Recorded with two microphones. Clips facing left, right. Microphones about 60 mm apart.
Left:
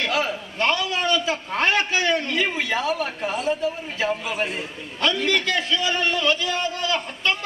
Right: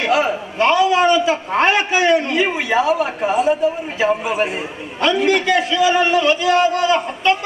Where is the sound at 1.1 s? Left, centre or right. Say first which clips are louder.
Right 7 dB; centre.